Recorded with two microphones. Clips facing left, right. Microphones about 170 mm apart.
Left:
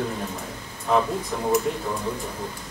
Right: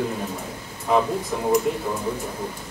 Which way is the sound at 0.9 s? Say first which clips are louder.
Right 1 dB; 5° right (ahead or behind).